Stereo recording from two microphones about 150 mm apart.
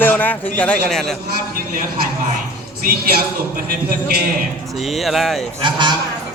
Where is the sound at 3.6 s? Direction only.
80° right.